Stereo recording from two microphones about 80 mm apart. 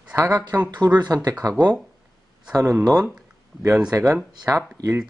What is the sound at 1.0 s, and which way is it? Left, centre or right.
Speech, right.